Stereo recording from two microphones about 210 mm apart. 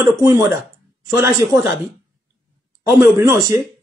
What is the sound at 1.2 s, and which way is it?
Speech, 10° right (ahead or behind).